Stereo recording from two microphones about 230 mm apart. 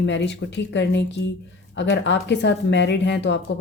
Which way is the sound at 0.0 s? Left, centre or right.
Left.